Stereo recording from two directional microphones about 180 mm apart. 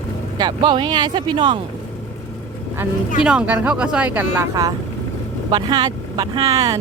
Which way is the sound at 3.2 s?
5° right (ahead or behind).